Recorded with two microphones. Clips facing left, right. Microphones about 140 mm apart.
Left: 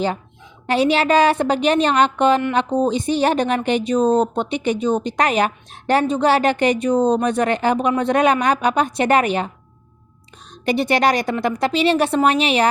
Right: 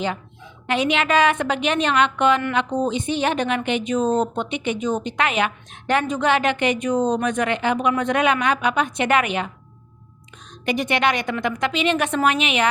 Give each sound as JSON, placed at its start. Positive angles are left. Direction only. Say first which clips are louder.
{"t": 0.7, "sound": "a woman's voice", "louder": "left 4 dB", "side_deg": 35}
{"t": 10.5, "sound": "a woman's voice", "louder": "left 4 dB", "side_deg": 35}